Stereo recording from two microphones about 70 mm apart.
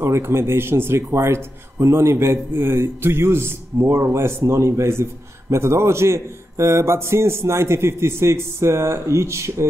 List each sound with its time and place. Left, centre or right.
0.0 s speech: right